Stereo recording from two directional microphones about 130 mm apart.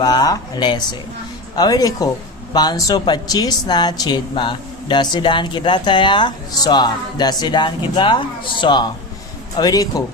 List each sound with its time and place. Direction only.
0.0 s speech: 30° left (ahead or behind)